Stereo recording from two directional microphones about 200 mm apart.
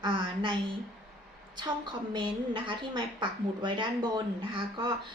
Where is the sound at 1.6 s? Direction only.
20° right (ahead or behind).